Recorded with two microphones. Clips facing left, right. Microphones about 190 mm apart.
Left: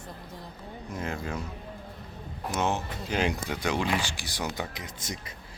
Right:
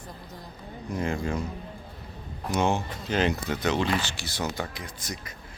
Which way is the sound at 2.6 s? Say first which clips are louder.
Right 3 dB; centre (ahead or behind).